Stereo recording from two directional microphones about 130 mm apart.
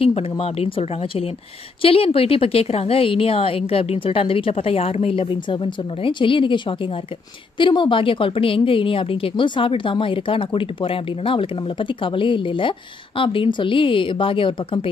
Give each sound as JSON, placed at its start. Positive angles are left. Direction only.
{"t": 0.0, "sound": "a woman's voice", "side_deg": 50}